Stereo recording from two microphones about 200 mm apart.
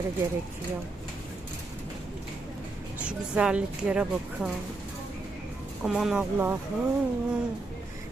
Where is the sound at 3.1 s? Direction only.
5° right (ahead or behind).